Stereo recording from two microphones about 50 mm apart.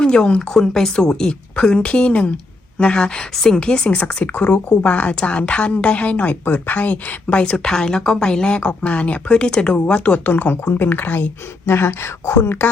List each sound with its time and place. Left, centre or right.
0.0 s a woman's voice: centre
3.3 s a woman's voice: centre
3.6 s a woman's voice: centre
6.4 s speech: left
7.3 s a woman's voice: centre
10.2 s speech: left
11.7 s speech: left
12.4 s speech: left